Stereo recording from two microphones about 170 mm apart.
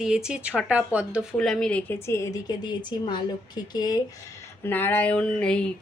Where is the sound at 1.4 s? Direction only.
5° left (ahead or behind); by 4.0 s 25° left (ahead or behind).